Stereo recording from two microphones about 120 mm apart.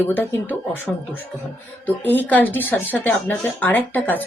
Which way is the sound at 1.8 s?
15° left (ahead or behind).